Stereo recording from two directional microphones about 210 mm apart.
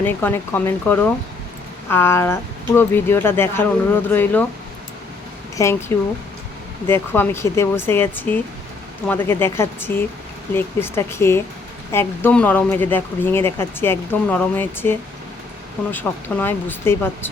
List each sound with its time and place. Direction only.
0.0 s speech: 10° left (ahead or behind)
5.6 s speech: 15° left (ahead or behind)
6.8 s speech: 10° left (ahead or behind)